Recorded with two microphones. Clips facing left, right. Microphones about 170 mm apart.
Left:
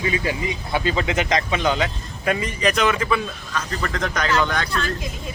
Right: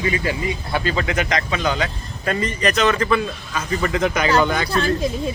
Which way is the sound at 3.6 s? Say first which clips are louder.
Right 5 dB; 5° right (ahead or behind).